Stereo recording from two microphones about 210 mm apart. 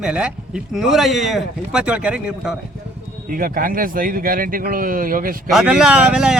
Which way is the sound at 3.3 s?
45° right (ahead or behind).